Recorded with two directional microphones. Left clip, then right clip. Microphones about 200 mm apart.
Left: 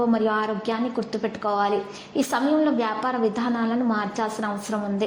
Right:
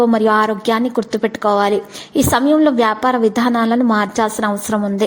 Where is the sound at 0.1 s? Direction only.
40° right (ahead or behind).